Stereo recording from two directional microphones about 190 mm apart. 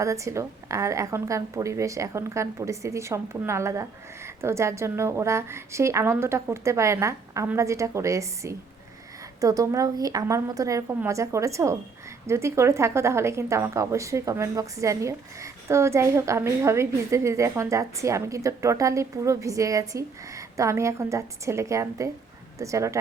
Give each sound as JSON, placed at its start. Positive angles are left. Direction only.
{"t": 0.0, "sound": "a woman's voice", "side_deg": -15}